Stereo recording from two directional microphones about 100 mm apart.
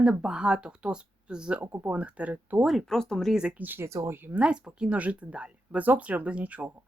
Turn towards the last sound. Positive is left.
turn(degrees=-15)  # may be behind; listen again after turning